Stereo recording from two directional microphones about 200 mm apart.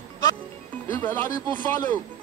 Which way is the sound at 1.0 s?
10° left (ahead or behind).